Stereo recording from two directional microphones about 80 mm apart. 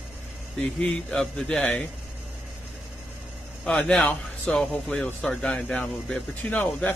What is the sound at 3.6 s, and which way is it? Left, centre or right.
A man's voice, centre.